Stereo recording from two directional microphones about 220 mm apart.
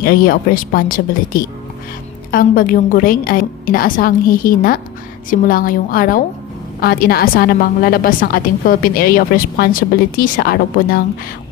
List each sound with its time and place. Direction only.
0.0 s a woman's voice: 40° left (ahead or behind)